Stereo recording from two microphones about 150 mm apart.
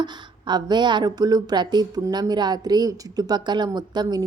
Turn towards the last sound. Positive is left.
turn(degrees=-25)  # may be behind; listen again after turning